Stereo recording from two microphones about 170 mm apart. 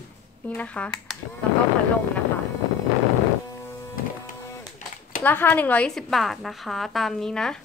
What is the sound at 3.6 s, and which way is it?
Music, 20° left (ahead or behind).